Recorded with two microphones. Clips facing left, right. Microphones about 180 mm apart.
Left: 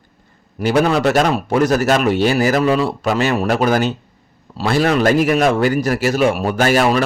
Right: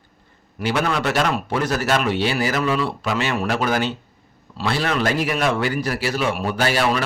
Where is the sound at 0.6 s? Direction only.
40° left (ahead or behind).